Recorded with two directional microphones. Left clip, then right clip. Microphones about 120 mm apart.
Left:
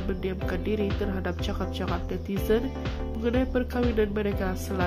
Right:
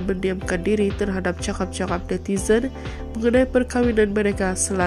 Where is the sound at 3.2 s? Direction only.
35° right (ahead or behind).